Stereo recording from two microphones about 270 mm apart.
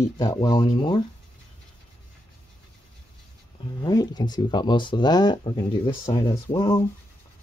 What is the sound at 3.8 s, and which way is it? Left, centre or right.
Speech, centre.